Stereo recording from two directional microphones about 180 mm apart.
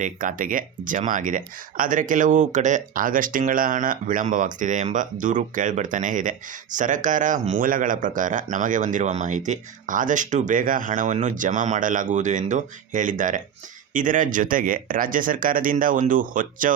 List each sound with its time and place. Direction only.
0.0 s speech: 45° right (ahead or behind)